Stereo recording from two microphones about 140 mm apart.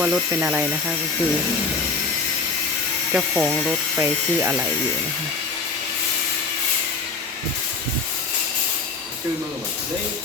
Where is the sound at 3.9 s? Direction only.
15° right (ahead or behind).